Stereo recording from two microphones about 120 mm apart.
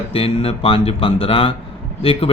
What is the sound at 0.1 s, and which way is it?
Speech, 50° left (ahead or behind).